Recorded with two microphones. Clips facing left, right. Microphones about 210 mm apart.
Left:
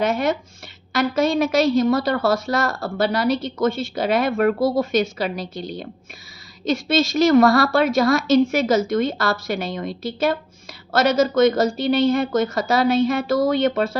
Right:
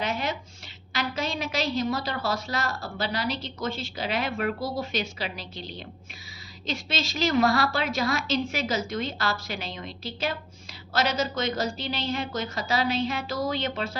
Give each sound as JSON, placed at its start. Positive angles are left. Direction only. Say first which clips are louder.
{"t": 0.0, "sound": "a woman's voice", "louder": "left 9 dB", "side_deg": 45}